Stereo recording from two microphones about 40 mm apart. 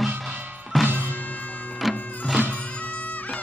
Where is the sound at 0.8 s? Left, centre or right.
Right.